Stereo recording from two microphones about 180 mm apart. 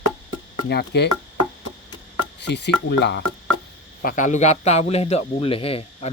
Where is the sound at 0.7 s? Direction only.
70° left (ahead or behind).